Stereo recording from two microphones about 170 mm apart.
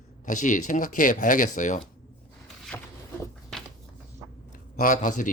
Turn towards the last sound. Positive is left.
turn(degrees=50)  # may be behind; listen again after turning